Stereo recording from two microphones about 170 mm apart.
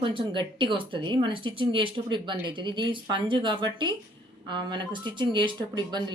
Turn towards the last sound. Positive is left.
turn(degrees=-25)  # may be behind; listen again after turning